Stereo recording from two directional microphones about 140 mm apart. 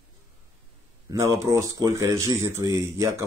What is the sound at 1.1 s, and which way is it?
Speech, 20° right (ahead or behind).